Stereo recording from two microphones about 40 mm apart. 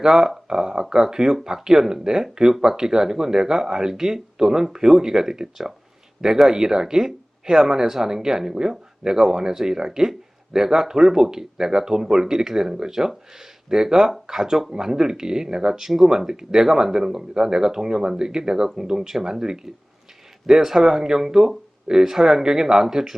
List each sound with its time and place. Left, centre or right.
0.0 s speech: centre